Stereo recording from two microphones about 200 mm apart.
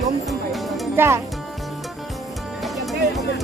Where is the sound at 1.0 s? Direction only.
10° right (ahead or behind).